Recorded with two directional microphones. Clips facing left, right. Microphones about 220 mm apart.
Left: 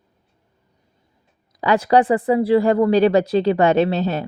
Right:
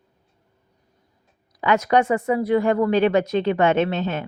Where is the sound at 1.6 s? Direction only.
35° left (ahead or behind).